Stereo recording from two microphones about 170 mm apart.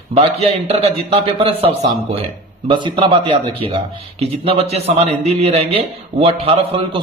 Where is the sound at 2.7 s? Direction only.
30° right (ahead or behind).